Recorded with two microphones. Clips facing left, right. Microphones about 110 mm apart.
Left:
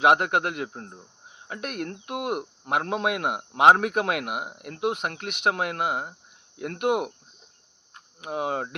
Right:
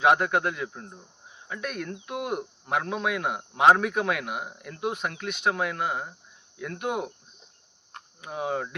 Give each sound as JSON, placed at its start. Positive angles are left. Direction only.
{"t": 0.0, "sound": "speech", "side_deg": 65}
{"t": 1.5, "sound": "speech", "side_deg": 60}
{"t": 8.2, "sound": "speech", "side_deg": 60}